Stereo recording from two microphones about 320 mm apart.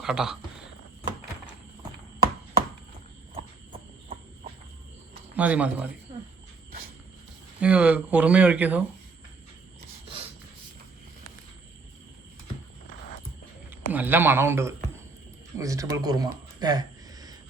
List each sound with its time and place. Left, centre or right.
0.0 s speech: centre
3.3 s horse: centre
5.3 s speech: centre
7.6 s speech: centre
12.9 s a sound: left
13.9 s speech: centre
16.6 s a sound: centre